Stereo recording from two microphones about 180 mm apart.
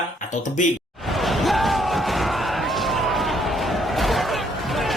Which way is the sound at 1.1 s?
Centre (ahead or behind).